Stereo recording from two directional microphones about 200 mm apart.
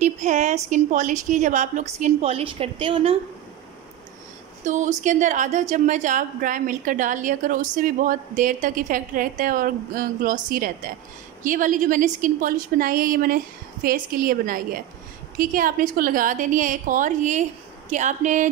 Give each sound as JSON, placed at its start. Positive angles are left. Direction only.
{"t": 0.0, "sound": "a woman's voice", "side_deg": -35}
{"t": 4.6, "sound": "a woman's voice", "side_deg": -35}